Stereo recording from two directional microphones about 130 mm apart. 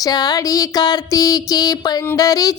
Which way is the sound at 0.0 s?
30° left (ahead or behind).